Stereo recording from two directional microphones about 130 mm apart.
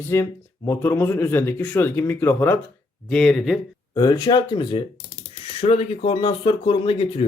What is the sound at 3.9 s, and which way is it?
Speech, 30° left (ahead or behind).